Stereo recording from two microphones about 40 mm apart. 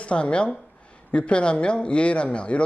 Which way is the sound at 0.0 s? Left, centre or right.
Left.